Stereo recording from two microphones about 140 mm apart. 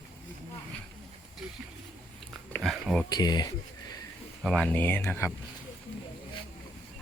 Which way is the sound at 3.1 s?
30° left (ahead or behind).